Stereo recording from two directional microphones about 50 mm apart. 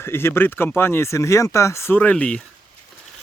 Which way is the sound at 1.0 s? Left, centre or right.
Left.